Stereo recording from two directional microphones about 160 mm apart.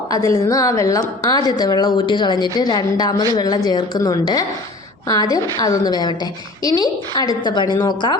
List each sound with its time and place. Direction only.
0.1 s a woman's voice: 20° left (ahead or behind)